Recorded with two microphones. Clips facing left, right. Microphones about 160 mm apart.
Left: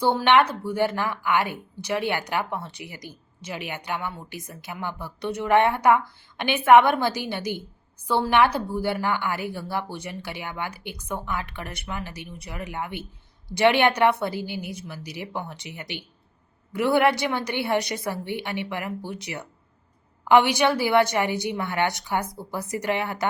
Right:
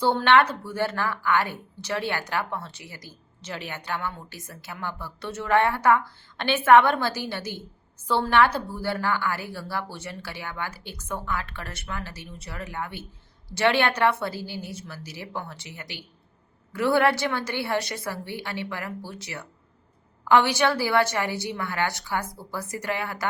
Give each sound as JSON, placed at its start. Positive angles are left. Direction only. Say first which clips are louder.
{"t": 0.0, "sound": "a woman's voice", "louder": "left 1 dB", "side_deg": 10}